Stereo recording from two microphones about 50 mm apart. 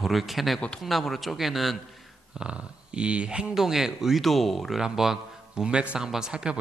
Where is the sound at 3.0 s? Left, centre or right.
Right.